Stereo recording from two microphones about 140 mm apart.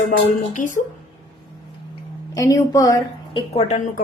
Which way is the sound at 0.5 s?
65° left (ahead or behind).